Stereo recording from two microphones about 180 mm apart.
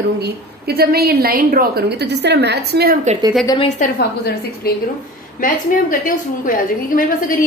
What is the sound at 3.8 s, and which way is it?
A woman's voice, 60° left (ahead or behind).